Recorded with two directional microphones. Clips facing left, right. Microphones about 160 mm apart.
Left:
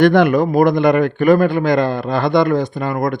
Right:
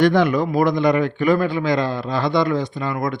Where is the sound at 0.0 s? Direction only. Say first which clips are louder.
Left 4 dB; 60° left (ahead or behind).